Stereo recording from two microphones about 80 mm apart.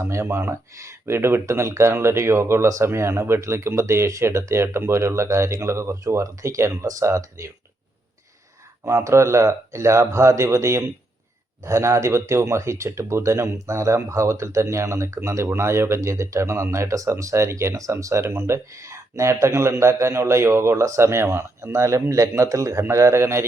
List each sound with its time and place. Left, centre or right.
0.0 s speech: right
8.8 s speech: right